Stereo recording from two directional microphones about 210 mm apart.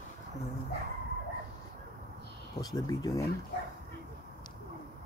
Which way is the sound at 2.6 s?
15° left (ahead or behind).